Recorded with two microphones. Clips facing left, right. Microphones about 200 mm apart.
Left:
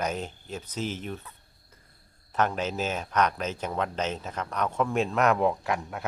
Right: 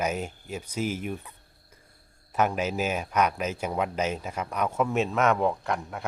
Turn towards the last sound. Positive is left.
turn(degrees=0)  # may be behind; listen again after turning